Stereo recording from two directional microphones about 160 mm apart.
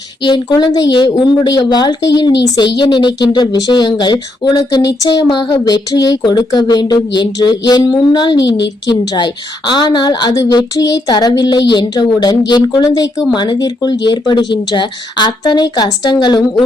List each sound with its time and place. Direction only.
0.2 s speech: 30° left (ahead or behind)
8.4 s a woman's voice: 90° left
8.9 s speech: 30° left (ahead or behind)